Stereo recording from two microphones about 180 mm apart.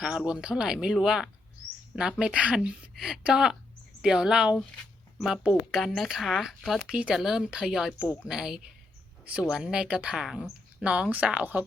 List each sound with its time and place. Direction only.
0.0 s speech: 5° right (ahead or behind)
8.0 s a woman's voice: 20° left (ahead or behind)
8.3 s a woman's voice: 5° right (ahead or behind)